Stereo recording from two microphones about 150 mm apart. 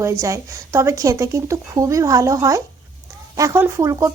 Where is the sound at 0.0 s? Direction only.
20° right (ahead or behind).